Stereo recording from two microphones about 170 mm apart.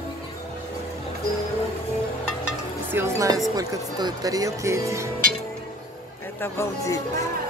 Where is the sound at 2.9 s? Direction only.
15° right (ahead or behind).